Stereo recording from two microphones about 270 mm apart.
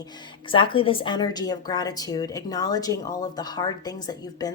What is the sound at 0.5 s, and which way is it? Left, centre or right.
A woman's voice, centre.